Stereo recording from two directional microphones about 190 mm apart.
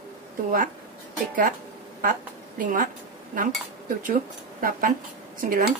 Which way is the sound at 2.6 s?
45° right (ahead or behind).